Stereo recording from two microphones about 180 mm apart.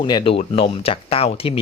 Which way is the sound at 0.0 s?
25° left (ahead or behind).